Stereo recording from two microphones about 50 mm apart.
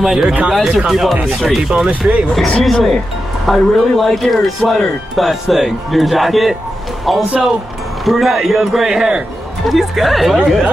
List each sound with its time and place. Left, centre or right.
0.0 s speech: centre
1.6 s speech: centre
2.3 s speech: centre
8.9 s speech: centre
9.7 s speech: centre